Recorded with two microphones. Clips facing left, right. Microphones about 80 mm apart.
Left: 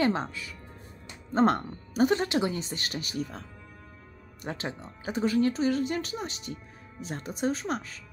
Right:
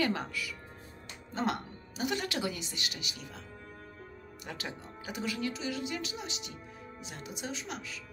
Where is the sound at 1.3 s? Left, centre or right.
Left.